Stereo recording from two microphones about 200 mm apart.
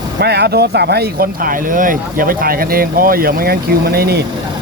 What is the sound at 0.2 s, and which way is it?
Speech, 55° right (ahead or behind).